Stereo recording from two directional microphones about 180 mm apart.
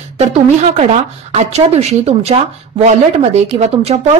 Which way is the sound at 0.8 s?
35° right (ahead or behind).